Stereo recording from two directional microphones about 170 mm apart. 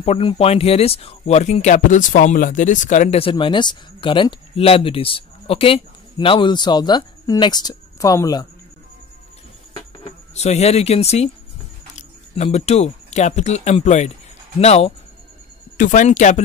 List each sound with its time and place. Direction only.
0.0 s speech: 35° left (ahead or behind)
10.3 s speech: 40° left (ahead or behind)